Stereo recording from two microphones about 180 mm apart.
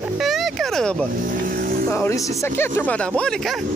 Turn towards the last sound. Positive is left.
turn(degrees=0)  # may be behind; listen again after turning